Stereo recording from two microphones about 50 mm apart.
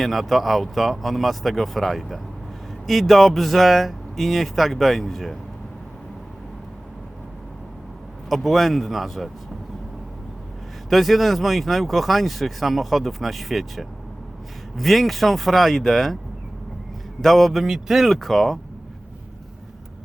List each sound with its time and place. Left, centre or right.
0.0 s speech: centre
8.3 s speech: centre
10.8 s speech: centre
17.2 s speech: centre